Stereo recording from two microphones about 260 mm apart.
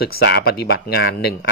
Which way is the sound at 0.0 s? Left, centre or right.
Left.